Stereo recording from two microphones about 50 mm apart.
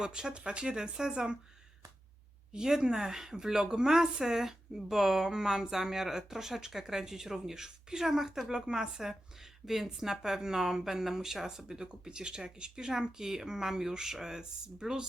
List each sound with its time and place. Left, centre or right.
0.0 s speech: centre
2.5 s speech: centre